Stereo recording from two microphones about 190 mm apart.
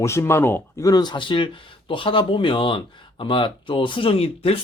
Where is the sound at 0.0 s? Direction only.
15° left (ahead or behind).